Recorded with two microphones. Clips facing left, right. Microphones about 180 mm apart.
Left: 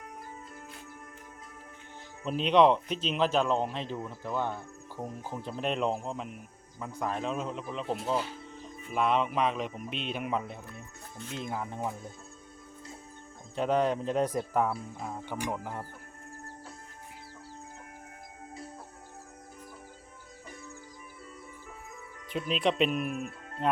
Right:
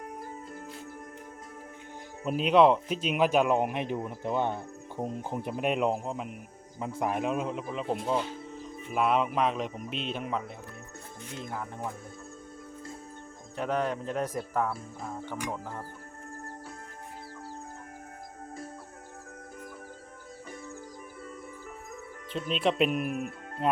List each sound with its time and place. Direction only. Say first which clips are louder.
2.2 s speech: right 1 dB; 5° right (ahead or behind)
11.4 s speech: left 2 dB; 15° left (ahead or behind)
13.6 s speech: left 3 dB; 20° left (ahead or behind)
22.3 s speech: even; 5° left (ahead or behind)